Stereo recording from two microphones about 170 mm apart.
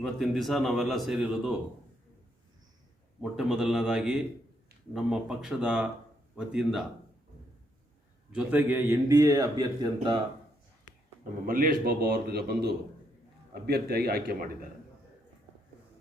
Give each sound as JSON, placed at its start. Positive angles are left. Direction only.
{"t": 0.0, "sound": "a man's voice", "side_deg": 0}
{"t": 3.2, "sound": "a man's voice", "side_deg": -5}
{"t": 8.3, "sound": "a man's voice", "side_deg": -5}
{"t": 11.4, "sound": "a man's voice", "side_deg": -55}